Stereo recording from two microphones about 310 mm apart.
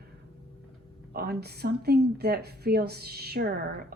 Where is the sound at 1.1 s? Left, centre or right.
Right.